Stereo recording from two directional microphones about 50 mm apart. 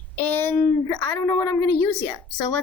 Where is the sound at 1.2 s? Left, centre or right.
Left.